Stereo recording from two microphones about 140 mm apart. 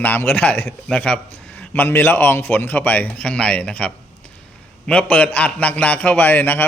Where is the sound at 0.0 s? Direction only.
15° left (ahead or behind).